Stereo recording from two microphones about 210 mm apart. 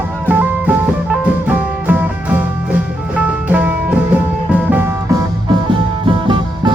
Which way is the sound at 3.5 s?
5° right (ahead or behind).